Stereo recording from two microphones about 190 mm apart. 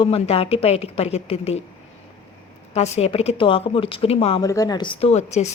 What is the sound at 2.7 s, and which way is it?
Speech, 35° left (ahead or behind).